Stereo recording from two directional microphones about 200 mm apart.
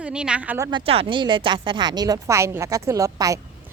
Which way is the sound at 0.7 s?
25° right (ahead or behind).